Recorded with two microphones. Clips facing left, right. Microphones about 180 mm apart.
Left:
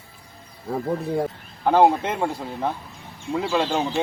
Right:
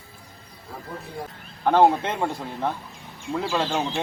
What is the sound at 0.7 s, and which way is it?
Speech, 60° left (ahead or behind).